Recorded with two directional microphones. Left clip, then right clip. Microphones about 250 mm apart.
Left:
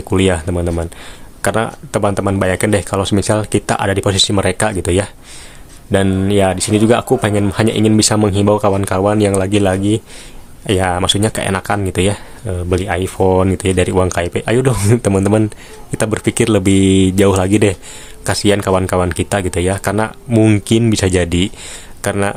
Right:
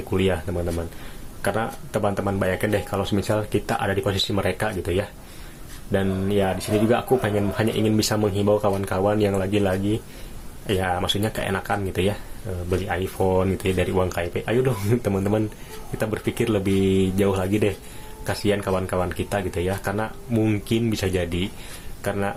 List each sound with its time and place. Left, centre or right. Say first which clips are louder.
0.1 s speech: left 9 dB; left